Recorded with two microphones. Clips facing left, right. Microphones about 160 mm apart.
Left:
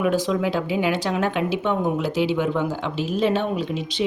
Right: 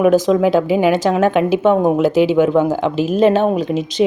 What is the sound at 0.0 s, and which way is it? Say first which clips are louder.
A woman's voice: right 9 dB; 45° right (ahead or behind).